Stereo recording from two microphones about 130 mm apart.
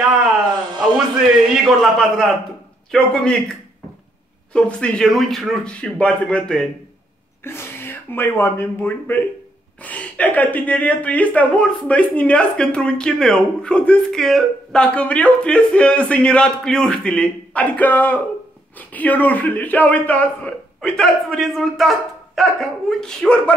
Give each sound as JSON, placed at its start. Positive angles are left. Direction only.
{"t": 1.5, "sound": "a man's voice", "side_deg": 0}
{"t": 7.4, "sound": "speech", "side_deg": 20}